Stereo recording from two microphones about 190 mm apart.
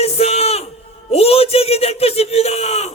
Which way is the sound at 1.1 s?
30° left (ahead or behind).